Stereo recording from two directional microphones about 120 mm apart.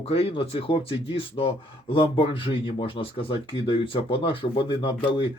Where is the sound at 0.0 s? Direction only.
55° left (ahead or behind).